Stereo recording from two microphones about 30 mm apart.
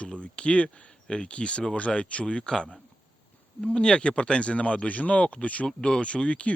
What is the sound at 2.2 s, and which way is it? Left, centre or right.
Speech, left.